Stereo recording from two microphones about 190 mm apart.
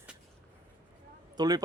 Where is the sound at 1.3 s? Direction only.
20° right (ahead or behind).